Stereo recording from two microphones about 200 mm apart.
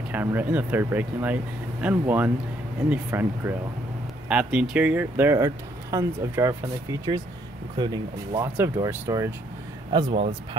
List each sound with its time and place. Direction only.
0.1 s speech: 10° right (ahead or behind)
10.1 s speech: 30° right (ahead or behind)